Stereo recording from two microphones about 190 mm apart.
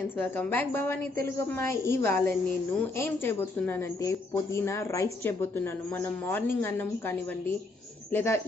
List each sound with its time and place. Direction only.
0.2 s a woman's voice: 10° left (ahead or behind)